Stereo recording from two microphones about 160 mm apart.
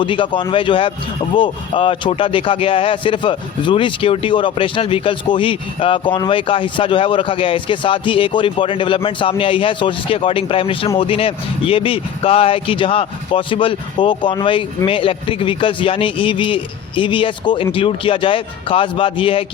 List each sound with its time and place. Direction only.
0.0 s speech: 30° left (ahead or behind)